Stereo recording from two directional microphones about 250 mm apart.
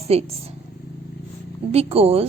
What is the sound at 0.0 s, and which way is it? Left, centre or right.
Speech, right.